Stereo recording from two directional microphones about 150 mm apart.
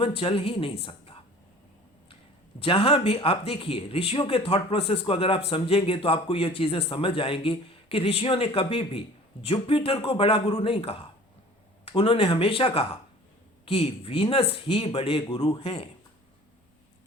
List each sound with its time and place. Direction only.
0.2 s speech: 35° left (ahead or behind)
2.6 s speech: 40° left (ahead or behind)